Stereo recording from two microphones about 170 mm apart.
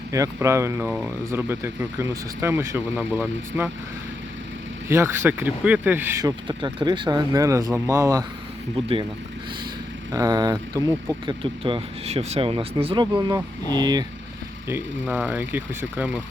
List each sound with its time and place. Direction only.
0.1 s speech: 20° right (ahead or behind)
4.9 s speech: 15° right (ahead or behind)
8.7 s speech: 30° right (ahead or behind)
10.1 s speech: 25° right (ahead or behind)
11.4 s speech: 30° right (ahead or behind)
14.7 s speech: 10° right (ahead or behind)